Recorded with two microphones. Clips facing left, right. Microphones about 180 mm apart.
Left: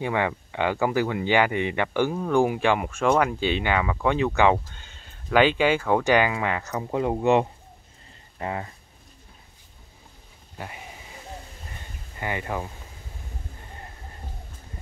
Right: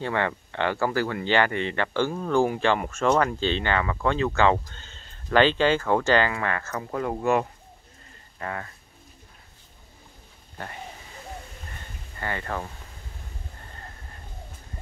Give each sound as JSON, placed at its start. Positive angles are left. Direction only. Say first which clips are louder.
{"t": 0.0, "sound": "speech", "louder": "left 1 dB", "side_deg": 10}
{"t": 12.2, "sound": "speech", "louder": "left 2 dB", "side_deg": 15}